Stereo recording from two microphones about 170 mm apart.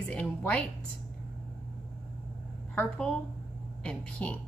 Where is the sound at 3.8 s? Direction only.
10° left (ahead or behind).